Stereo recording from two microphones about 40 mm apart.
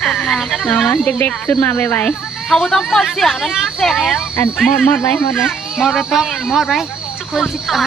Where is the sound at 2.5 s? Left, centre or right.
Left.